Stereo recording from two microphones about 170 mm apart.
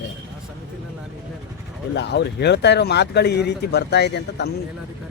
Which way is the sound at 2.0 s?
80° left.